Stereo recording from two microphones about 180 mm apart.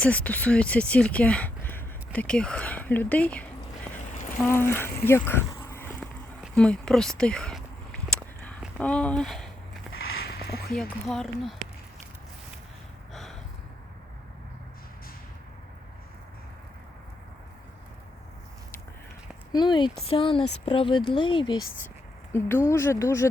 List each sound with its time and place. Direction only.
0.0 s speech: 10° left (ahead or behind)
6.6 s a sound: 5° left (ahead or behind)
10.2 s a sound: 60° left (ahead or behind)
11.1 s speech: centre (ahead or behind)
19.5 s speech: 25° left (ahead or behind)
22.3 s speech: 15° left (ahead or behind)